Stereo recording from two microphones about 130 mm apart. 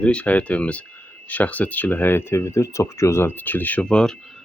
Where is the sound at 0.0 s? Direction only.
10° left (ahead or behind).